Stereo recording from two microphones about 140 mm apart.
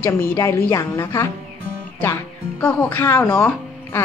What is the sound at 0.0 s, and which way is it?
A woman's voice, 15° left (ahead or behind).